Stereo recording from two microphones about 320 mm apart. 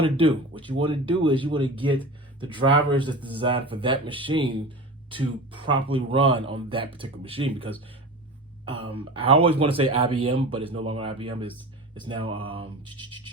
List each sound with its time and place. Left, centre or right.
0.2 s speech: centre
8.7 s speech: centre